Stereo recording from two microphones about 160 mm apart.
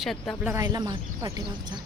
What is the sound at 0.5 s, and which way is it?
Speech, 25° right (ahead or behind).